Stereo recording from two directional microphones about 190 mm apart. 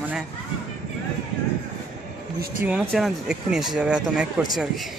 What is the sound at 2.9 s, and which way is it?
Speech, centre (ahead or behind).